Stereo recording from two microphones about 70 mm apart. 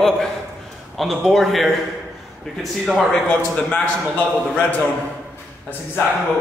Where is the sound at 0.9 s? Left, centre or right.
Centre; by 4.8 s left.